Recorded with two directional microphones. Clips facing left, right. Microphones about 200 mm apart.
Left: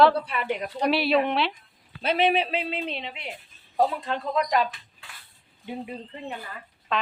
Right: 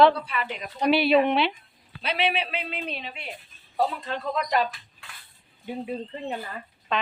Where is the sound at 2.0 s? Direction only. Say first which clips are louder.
Left 4 dB; 45° left (ahead or behind); by 3.2 s 25° left (ahead or behind).